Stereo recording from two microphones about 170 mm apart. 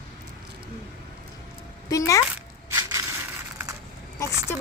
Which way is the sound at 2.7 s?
20° right (ahead or behind).